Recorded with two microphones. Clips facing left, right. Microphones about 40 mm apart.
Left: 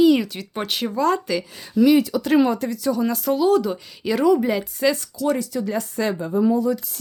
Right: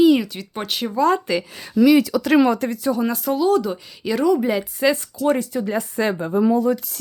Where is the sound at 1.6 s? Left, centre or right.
Right.